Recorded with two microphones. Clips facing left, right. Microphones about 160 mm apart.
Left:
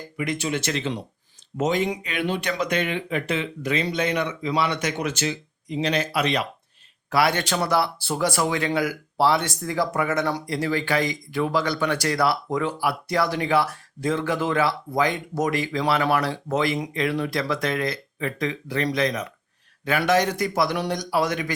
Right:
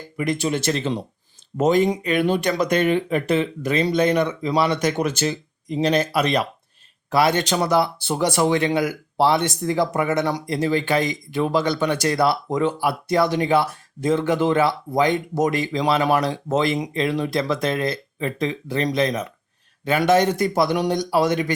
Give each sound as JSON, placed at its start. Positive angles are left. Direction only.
{"t": 0.2, "sound": "speech", "side_deg": -40}
{"t": 7.1, "sound": "speech", "side_deg": -20}